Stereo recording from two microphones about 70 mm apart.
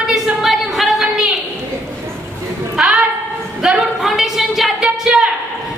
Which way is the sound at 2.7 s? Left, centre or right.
Centre.